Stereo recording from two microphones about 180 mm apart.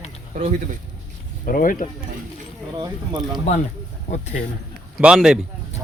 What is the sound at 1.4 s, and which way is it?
Speech, 50° left (ahead or behind).